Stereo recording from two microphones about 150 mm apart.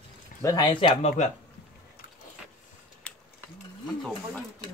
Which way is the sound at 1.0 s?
50° left (ahead or behind).